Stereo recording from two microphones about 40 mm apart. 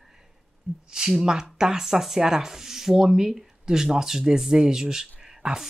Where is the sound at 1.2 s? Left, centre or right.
Centre.